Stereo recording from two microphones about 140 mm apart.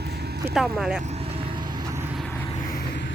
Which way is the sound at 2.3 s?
15° left (ahead or behind).